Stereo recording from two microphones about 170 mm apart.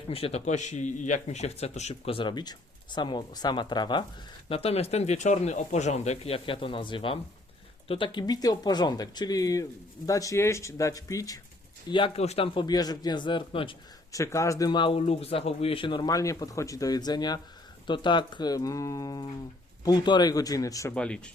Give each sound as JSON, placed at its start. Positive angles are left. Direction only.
{"t": 0.1, "sound": "speech", "side_deg": 35}
{"t": 14.1, "sound": "speech", "side_deg": 20}
{"t": 20.9, "sound": "speech", "side_deg": 5}